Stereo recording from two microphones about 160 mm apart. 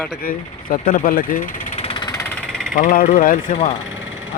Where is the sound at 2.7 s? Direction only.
60° left (ahead or behind).